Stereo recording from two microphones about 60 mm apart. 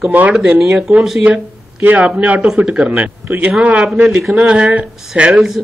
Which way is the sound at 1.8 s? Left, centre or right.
Right.